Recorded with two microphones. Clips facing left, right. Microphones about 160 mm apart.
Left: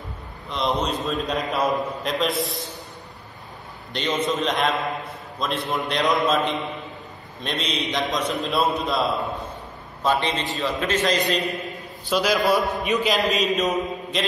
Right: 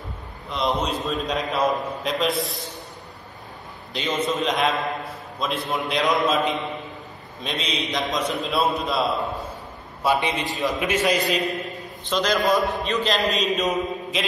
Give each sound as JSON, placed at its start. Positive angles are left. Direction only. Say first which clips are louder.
{"t": 0.5, "sound": "a man's voice", "louder": "even", "side_deg": 0}
{"t": 3.9, "sound": "a man's voice", "louder": "left 1 dB", "side_deg": 0}
{"t": 10.0, "sound": "a man's voice", "louder": "even", "side_deg": -10}
{"t": 12.1, "sound": "a man's voice", "louder": "left 1 dB", "side_deg": 5}
{"t": 12.4, "sound": "a man's voice", "louder": "even", "side_deg": -20}
{"t": 13.0, "sound": "a man's voice", "louder": "even", "side_deg": 0}